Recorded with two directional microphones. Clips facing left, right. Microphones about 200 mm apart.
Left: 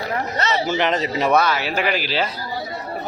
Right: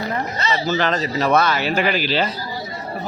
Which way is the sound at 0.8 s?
20° left (ahead or behind).